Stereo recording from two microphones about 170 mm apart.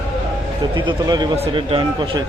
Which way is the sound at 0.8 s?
25° right (ahead or behind).